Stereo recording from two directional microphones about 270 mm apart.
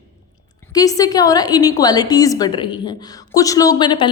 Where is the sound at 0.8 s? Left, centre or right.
Centre.